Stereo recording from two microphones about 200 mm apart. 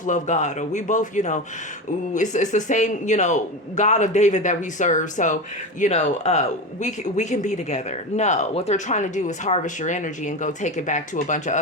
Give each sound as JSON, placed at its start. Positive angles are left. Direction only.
{"t": 0.0, "sound": "a man's voice", "side_deg": 35}